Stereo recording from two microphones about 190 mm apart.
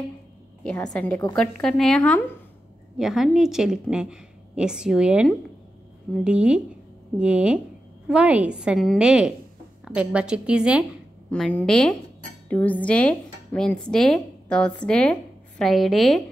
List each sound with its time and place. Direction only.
0.9 s a woman's voice: 5° left (ahead or behind)
11.2 s speech: 5° left (ahead or behind)